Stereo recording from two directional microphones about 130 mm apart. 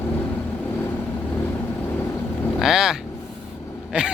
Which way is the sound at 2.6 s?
5° right (ahead or behind).